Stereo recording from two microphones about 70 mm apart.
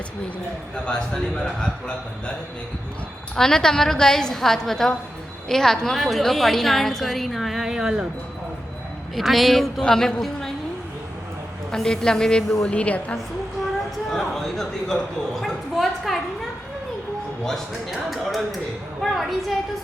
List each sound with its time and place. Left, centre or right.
0.9 s a woman's voice: centre
3.3 s a woman's voice: centre
9.1 s a woman's voice: centre
11.7 s a woman's voice: centre
14.1 s a sound: centre
17.4 s a woman's voice: centre